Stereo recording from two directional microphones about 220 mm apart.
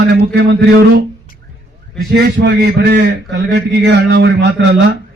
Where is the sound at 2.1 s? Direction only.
50° right (ahead or behind).